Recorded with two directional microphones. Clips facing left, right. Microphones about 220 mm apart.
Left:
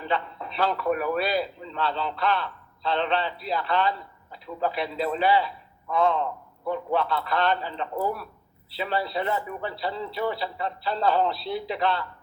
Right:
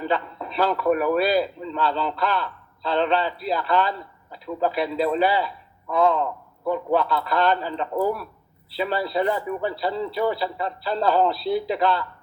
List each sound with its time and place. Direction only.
0.0 s a man's voice: 40° right (ahead or behind)